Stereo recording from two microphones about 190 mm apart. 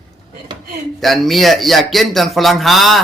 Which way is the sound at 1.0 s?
Centre (ahead or behind).